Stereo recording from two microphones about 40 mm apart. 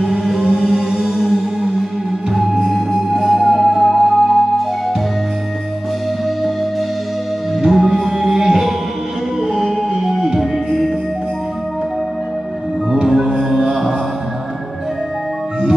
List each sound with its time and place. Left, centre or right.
0.0 s music: centre
2.3 s music: centre
7.6 s music: centre
12.9 s music: centre